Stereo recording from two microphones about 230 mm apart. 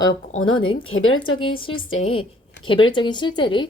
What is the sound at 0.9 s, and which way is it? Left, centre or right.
Speech, left.